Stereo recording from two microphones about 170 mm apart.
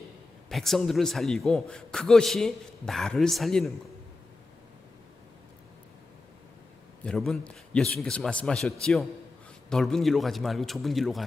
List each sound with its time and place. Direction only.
0.4 s a man's voice: centre (ahead or behind)
7.0 s a man's voice: 5° left (ahead or behind)